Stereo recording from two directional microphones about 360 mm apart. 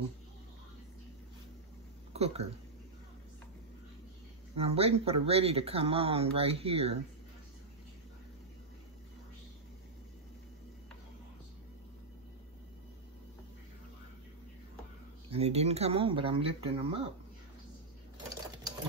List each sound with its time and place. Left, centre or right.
2.1 s speech: centre
4.6 s speech: centre
15.2 s speech: centre